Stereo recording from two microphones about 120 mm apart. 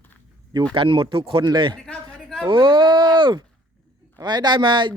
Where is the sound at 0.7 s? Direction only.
45° right (ahead or behind).